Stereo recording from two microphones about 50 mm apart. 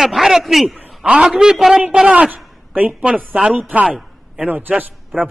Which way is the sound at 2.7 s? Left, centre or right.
Right.